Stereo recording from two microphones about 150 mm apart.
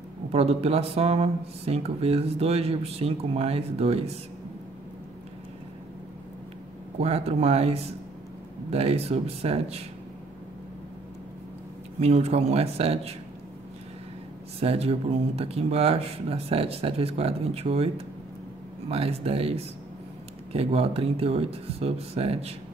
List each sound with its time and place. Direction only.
0.3 s speech: 40° right (ahead or behind)
7.0 s speech: 45° right (ahead or behind)
12.0 s speech: 45° right (ahead or behind)
14.6 s speech: 40° right (ahead or behind)